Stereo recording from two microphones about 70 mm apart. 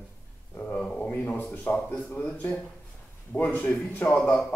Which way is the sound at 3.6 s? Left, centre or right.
Left.